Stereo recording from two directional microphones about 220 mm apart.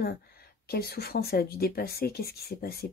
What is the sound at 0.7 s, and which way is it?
Speech, 45° left (ahead or behind).